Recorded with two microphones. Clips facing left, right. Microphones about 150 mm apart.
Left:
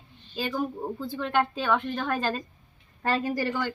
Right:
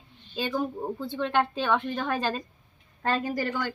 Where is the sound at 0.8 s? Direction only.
10° right (ahead or behind).